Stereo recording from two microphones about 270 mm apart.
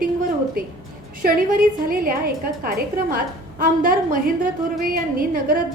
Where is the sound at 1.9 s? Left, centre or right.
Right.